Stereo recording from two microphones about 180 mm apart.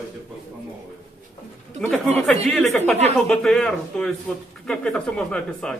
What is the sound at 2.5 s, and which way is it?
Speech, centre (ahead or behind).